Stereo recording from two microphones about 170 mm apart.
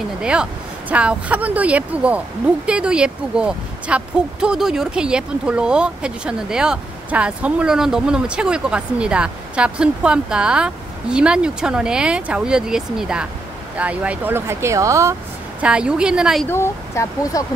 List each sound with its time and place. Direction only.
0.2 s speech: 5° right (ahead or behind)
15.6 s speech: 5° right (ahead or behind)
16.4 s speech: 15° left (ahead or behind)